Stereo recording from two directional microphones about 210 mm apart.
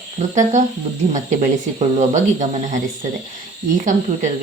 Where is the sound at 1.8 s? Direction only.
35° right (ahead or behind).